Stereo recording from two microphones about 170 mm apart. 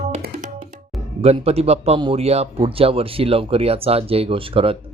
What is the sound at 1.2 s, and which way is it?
Speech, 40° right (ahead or behind).